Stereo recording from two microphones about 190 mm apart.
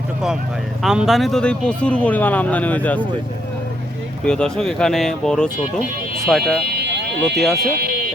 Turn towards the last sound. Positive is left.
turn(degrees=0)  # may be behind; listen again after turning